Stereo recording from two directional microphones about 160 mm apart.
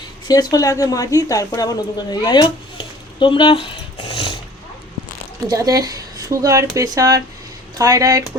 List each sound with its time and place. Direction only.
0.3 s speech: 25° left (ahead or behind)
5.5 s speech: 20° right (ahead or behind)